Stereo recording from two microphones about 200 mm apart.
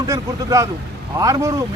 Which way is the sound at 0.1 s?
15° right (ahead or behind).